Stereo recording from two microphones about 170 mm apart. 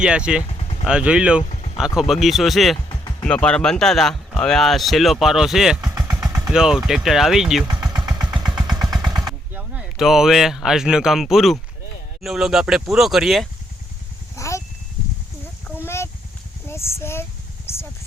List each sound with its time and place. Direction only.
0.0 s speech: 5° right (ahead or behind)
0.4 s vehicle: 35° left (ahead or behind)
0.9 s speech: 5° right (ahead or behind)
1.5 s a sound: 40° left (ahead or behind)
2.0 s speech: centre (ahead or behind)
2.9 s music: 25° left (ahead or behind)
3.2 s speech: 5° left (ahead or behind)
5.9 s vehicle: 15° right (ahead or behind)
6.5 s speech: 5° right (ahead or behind)
7.9 s vehicle: 5° right (ahead or behind)
8.5 s vehicle: 25° right (ahead or behind)
9.2 s speech: 5° right (ahead or behind)
14.3 s a sound: 20° left (ahead or behind)
16.6 s a sound: 15° left (ahead or behind)